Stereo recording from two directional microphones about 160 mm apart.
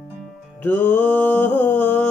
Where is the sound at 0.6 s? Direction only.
10° left (ahead or behind).